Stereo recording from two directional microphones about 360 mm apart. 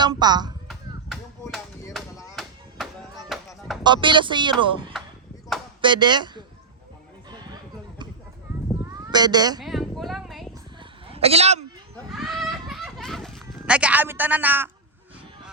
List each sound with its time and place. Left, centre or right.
0.0 s speech: centre
1.1 s chop: centre
3.8 s speech: centre
5.8 s speech: centre
7.3 s a sound: centre
8.8 s cat: centre
9.6 s a sound: centre
10.8 s a sound: centre
11.9 s children playing: centre